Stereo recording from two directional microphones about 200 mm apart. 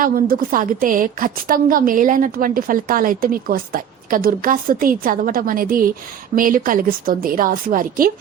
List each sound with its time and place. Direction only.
0.0 s a woman's voice: 45° right (ahead or behind)